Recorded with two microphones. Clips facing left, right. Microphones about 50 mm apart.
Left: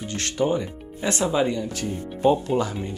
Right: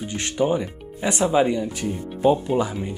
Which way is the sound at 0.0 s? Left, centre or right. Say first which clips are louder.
Right 1 dB; centre.